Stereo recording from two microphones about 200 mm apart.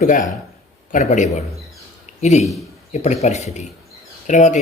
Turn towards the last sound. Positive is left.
turn(degrees=40)  # may be behind; listen again after turning